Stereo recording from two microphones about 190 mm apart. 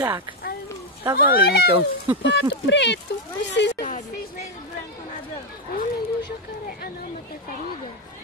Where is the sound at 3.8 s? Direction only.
40° left (ahead or behind).